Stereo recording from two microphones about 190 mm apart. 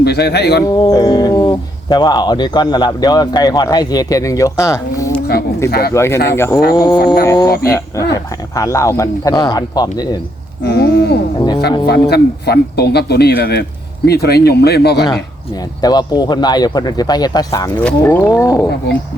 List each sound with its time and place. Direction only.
0.0 s speech: 60° left (ahead or behind)
0.8 s speech: 20° left (ahead or behind)
7.0 s speech: 55° left (ahead or behind)
7.3 s speech: 20° left (ahead or behind)
10.6 s speech: 60° left (ahead or behind)
11.3 s speech: 20° left (ahead or behind)
11.9 s speech: 60° left (ahead or behind)
15.8 s speech: 20° left (ahead or behind)
17.7 s speech: 10° left (ahead or behind)